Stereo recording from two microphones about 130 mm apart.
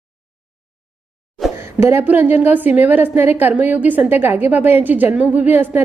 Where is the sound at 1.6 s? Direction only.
20° right (ahead or behind).